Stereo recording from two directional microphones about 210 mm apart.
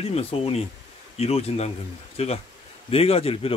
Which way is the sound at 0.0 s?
30° left (ahead or behind).